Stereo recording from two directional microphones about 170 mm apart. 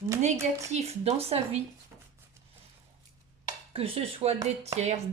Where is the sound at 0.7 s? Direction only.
40° right (ahead or behind).